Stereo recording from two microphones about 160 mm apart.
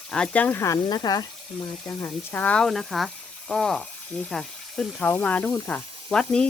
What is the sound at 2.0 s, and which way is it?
Speech, 10° left (ahead or behind).